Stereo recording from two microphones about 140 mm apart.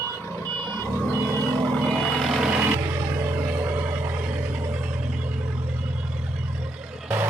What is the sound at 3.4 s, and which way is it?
Neigh, 15° right (ahead or behind).